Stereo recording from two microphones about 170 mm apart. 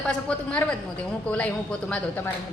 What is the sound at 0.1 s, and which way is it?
A woman's voice, 5° left (ahead or behind).